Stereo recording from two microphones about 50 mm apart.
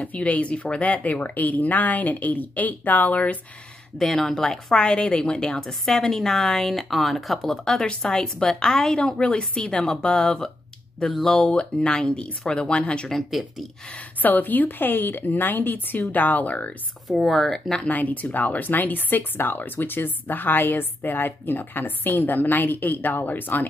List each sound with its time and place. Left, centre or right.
0.0 s speech: left
4.0 s speech: centre
4.7 s speech: left
5.6 s a woman's voice: centre
9.0 s a woman's voice: left; by 11.3 s centre
11.3 s speech: centre
13.3 s speech: centre
13.9 s speech: left
17.2 s a woman's voice: centre
17.8 s speech: left